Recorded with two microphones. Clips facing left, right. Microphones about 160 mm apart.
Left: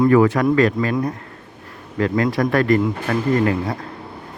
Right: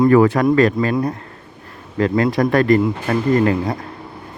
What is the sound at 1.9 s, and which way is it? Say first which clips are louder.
Speech: right 2 dB; 30° right (ahead or behind).